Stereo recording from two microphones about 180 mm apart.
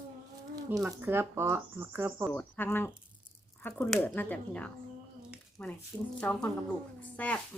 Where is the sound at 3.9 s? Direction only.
10° left (ahead or behind).